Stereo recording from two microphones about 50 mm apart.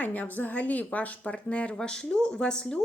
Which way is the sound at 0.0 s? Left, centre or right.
Left.